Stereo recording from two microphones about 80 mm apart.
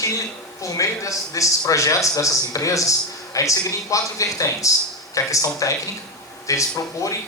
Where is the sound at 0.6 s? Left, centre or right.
Left.